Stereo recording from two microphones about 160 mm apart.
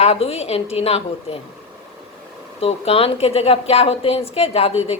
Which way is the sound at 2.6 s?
40° left (ahead or behind).